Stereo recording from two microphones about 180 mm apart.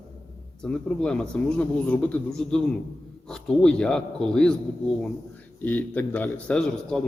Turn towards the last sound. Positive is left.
turn(degrees=5)  # may be behind; listen again after turning